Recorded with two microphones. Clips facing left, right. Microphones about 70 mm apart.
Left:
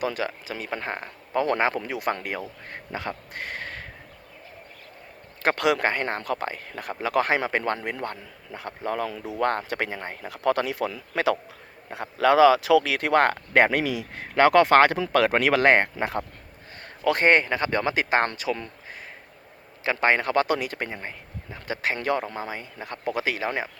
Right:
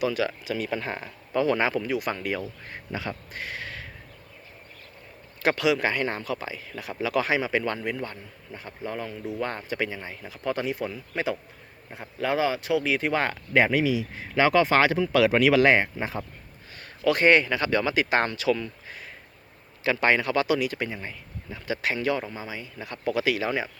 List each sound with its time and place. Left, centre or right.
0.0 s speech: left
1.7 s speech: left
5.4 s speech: left
7.8 s speech: left
9.4 s speech: left
17.0 s speech: left
19.8 s speech: left
21.9 s speech: left